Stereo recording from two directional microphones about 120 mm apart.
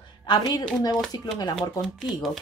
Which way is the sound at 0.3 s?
35° left (ahead or behind).